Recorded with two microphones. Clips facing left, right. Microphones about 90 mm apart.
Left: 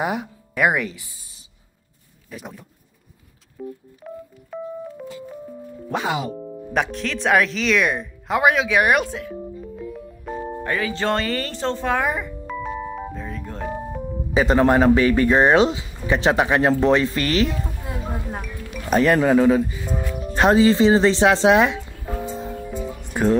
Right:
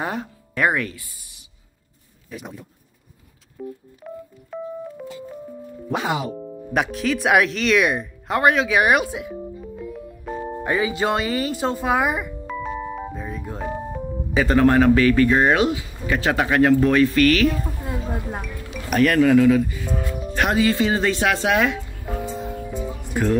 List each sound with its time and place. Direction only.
0.0 s speech: 10° left (ahead or behind)
2.2 s speech: centre (ahead or behind)
3.6 s speech: centre (ahead or behind)
4.0 s telephone dialing: centre (ahead or behind)
5.9 s speech: centre (ahead or behind)
9.4 s music: centre (ahead or behind)
10.6 s music: 15° right (ahead or behind); by 14.0 s centre (ahead or behind)
14.3 s speech: 20° left (ahead or behind)
17.8 s a sound: centre (ahead or behind)
18.9 s speech: 25° left (ahead or behind)
20.1 s music: 5° right (ahead or behind)
20.3 s speech: 30° left (ahead or behind)
22.2 s music: 30° left (ahead or behind)
23.2 s speech: 20° left (ahead or behind)